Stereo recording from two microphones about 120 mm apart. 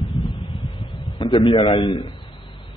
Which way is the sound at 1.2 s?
45° left (ahead or behind).